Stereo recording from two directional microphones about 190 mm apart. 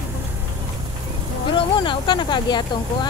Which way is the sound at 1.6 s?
25° left (ahead or behind).